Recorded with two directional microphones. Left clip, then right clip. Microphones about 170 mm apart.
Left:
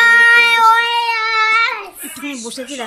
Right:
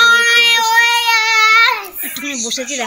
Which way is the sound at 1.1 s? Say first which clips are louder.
Right 4 dB; 40° right (ahead or behind).